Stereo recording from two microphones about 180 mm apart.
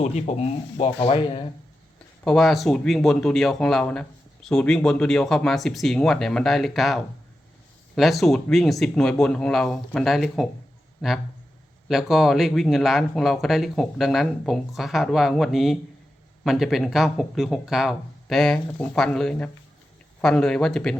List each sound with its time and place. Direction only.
0.0 s speech: 35° left (ahead or behind)
2.2 s speech: centre (ahead or behind)